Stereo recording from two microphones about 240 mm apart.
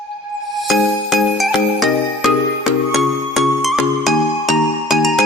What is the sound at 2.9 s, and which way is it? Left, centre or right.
Music, centre.